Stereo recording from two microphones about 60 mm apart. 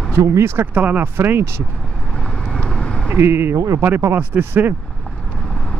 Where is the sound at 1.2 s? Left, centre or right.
Right.